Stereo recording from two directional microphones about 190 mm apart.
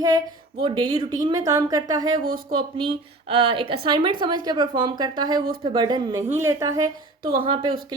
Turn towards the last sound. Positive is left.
turn(degrees=-25)  # may be behind; listen again after turning